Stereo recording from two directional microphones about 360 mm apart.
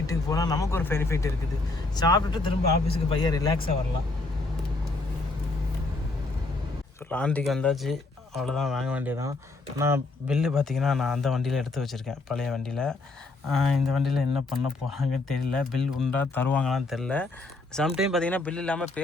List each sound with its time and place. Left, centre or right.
0.1 s speech: centre
7.1 s speech: centre